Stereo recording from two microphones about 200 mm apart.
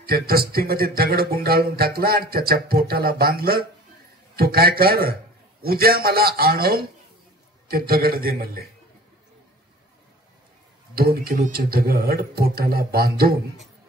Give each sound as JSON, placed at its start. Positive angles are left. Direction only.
{"t": 0.0, "sound": "speech", "side_deg": -50}
{"t": 11.0, "sound": "speech", "side_deg": -50}